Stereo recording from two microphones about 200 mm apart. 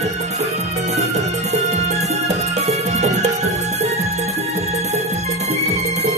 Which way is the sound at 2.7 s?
35° right (ahead or behind).